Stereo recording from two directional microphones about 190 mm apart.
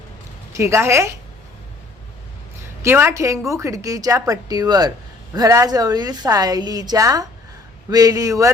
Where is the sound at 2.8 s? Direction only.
10° right (ahead or behind).